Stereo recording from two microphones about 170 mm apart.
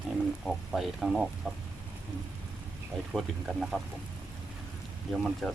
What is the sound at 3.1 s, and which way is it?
Speech, centre (ahead or behind).